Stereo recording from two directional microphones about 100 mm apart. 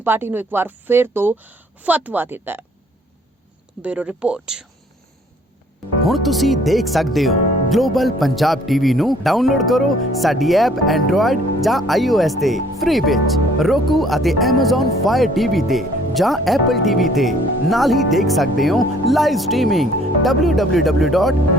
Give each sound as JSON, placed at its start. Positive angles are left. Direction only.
{"t": 0.0, "sound": "speech", "side_deg": -20}
{"t": 3.8, "sound": "speech", "side_deg": -15}
{"t": 6.1, "sound": "speech", "side_deg": 0}